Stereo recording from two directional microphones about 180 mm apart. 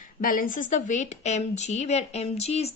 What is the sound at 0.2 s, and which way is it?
A woman's voice, 50° left (ahead or behind).